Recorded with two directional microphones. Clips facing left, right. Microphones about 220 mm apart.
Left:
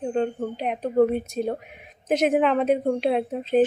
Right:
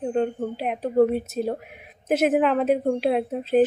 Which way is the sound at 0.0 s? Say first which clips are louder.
Right 1 dB; 5° right (ahead or behind).